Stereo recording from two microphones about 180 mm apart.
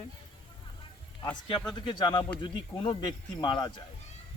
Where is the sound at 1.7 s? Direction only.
25° left (ahead or behind).